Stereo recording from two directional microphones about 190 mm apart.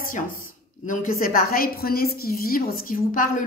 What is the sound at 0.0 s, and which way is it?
A woman's voice, 45° left (ahead or behind).